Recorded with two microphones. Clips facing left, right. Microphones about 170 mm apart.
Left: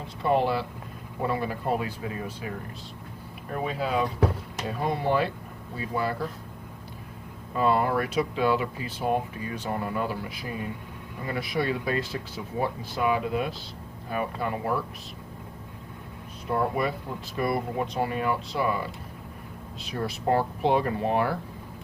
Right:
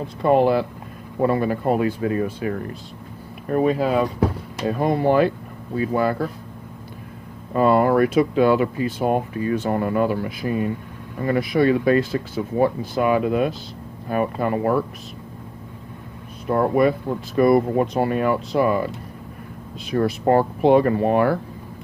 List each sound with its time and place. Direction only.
0.2 s speech: 50° right (ahead or behind)
3.5 s speech: 50° right (ahead or behind)
7.5 s speech: 55° right (ahead or behind)
16.5 s speech: 55° right (ahead or behind)
19.8 s speech: 55° right (ahead or behind)